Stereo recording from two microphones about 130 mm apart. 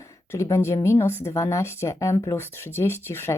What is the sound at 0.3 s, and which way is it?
A woman's voice, 20° left (ahead or behind).